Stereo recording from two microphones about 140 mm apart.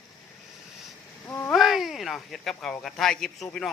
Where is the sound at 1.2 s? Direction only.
15° left (ahead or behind).